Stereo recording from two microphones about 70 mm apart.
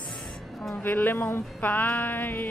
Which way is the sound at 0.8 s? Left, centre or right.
Left.